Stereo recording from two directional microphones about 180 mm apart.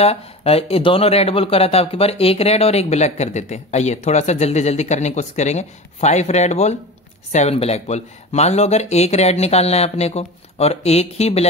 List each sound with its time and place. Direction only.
0.0 s speech: 35° left (ahead or behind)